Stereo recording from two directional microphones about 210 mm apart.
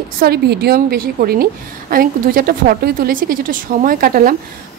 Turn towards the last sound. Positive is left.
turn(degrees=-40)  # may be behind; listen again after turning